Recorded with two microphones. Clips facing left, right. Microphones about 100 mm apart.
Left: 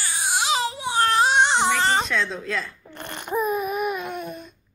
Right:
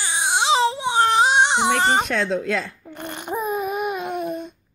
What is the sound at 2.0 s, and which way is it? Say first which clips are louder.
Speech: right 4 dB; 65° right (ahead or behind).